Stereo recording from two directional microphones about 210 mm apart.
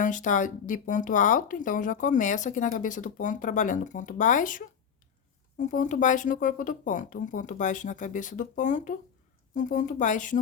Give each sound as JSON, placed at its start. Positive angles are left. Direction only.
{"t": 0.0, "sound": "speech", "side_deg": 35}